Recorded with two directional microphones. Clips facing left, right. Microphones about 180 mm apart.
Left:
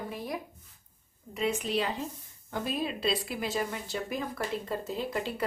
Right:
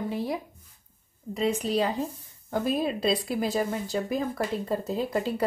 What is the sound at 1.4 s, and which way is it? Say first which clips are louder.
A woman's voice: right 4 dB; 35° right (ahead or behind).